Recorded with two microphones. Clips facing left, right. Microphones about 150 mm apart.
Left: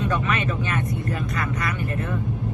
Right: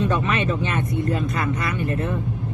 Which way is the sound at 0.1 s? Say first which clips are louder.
Right 2 dB; 30° right (ahead or behind).